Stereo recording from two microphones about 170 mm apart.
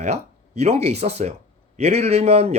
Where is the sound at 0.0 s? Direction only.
40° right (ahead or behind).